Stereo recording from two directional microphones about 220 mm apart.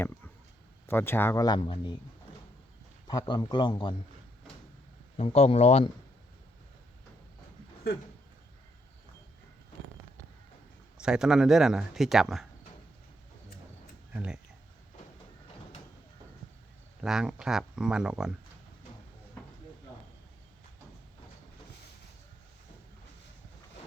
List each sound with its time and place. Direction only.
0.9 s speech: 10° left (ahead or behind)
3.1 s speech: 20° left (ahead or behind)
5.1 s speech: 30° left (ahead or behind)
11.0 s speech: 5° right (ahead or behind)
14.1 s speech: 5° right (ahead or behind)
17.0 s speech: centre (ahead or behind)